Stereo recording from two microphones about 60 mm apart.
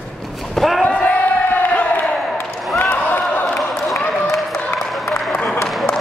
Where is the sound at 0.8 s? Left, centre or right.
Centre.